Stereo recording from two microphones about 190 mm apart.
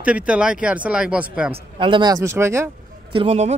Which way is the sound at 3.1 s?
35° right (ahead or behind).